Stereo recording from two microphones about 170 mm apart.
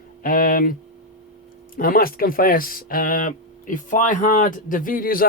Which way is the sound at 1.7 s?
60° left (ahead or behind).